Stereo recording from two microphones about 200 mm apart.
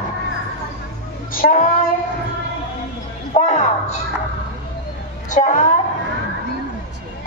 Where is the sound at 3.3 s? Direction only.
35° left (ahead or behind).